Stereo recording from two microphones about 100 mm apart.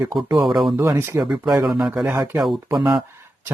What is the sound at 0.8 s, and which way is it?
Speech, 30° right (ahead or behind).